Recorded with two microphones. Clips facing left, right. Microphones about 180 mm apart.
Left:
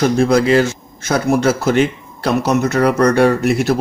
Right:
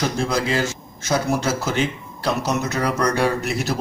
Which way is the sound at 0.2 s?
60° left (ahead or behind).